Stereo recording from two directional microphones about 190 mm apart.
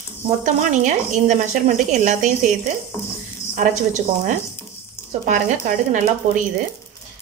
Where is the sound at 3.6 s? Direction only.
40° right (ahead or behind).